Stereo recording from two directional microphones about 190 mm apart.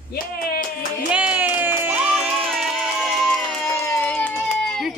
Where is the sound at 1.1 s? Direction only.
5° right (ahead or behind).